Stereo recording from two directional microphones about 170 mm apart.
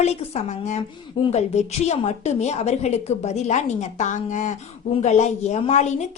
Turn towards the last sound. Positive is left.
turn(degrees=45)  # may be behind; listen again after turning